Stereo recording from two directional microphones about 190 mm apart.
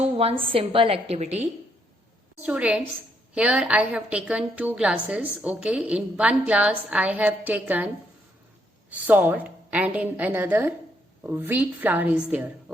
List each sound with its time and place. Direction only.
0.0 s a sound: 30° right (ahead or behind)
0.5 s a woman's voice: 30° right (ahead or behind)
2.4 s a woman's voice: 5° right (ahead or behind)
8.9 s a woman's voice: 10° right (ahead or behind)